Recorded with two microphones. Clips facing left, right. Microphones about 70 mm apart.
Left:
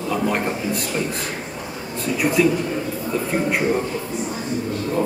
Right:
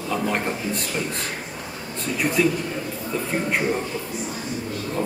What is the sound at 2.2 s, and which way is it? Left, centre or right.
Speech, centre.